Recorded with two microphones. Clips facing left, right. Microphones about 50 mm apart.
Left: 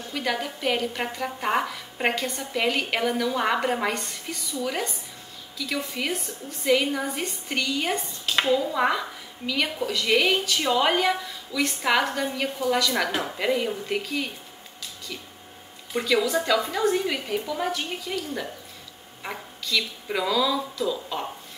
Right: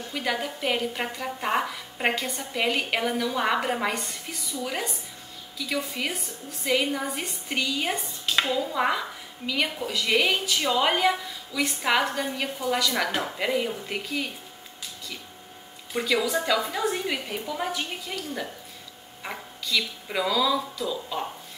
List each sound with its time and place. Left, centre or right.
0.1 s speech: centre
15.9 s speech: centre